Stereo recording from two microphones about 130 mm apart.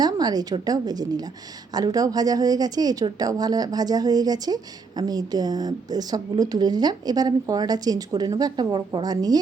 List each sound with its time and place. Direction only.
0.0 s a woman's voice: 30° right (ahead or behind)